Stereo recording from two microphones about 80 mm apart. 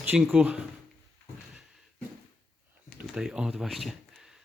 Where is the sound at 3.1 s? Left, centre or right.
Centre.